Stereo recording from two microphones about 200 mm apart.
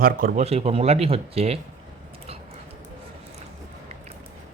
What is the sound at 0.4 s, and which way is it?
Speech, 30° right (ahead or behind).